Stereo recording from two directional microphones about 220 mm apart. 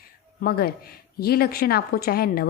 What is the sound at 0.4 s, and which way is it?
A woman's voice, 45° left (ahead or behind).